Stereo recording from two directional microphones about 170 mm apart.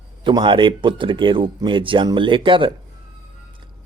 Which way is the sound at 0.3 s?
30° right (ahead or behind).